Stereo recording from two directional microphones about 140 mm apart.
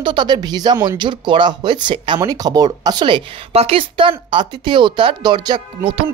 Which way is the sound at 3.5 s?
45° right (ahead or behind).